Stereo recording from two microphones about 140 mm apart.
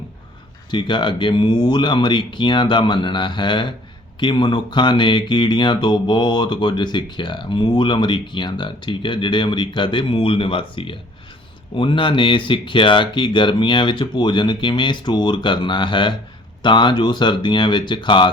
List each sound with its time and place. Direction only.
0.7 s speech: 35° left (ahead or behind)